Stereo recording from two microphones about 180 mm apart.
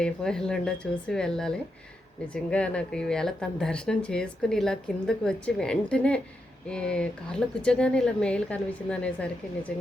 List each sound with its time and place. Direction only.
0.0 s speech: 5° left (ahead or behind)